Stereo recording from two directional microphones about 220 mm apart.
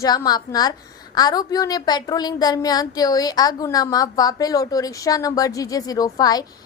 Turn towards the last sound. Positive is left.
turn(degrees=15)  # may be behind; listen again after turning